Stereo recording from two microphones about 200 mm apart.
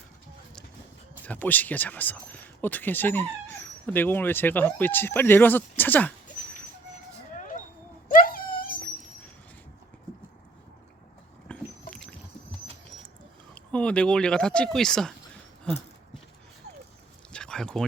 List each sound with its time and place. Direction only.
1.2 s speech: 10° left (ahead or behind)
8.0 s wail: 45° left (ahead or behind)
11.5 s vehicle: 5° left (ahead or behind)
13.5 s speech: 5° left (ahead or behind)
17.3 s a sound: 5° left (ahead or behind)